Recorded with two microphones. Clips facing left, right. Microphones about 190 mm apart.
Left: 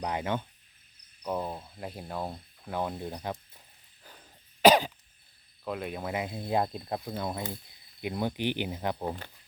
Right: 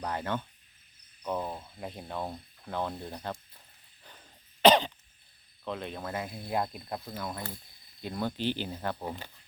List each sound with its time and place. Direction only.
0.0 s speech: 15° left (ahead or behind)
4.0 s cough: 5° left (ahead or behind)
5.6 s speech: 5° left (ahead or behind)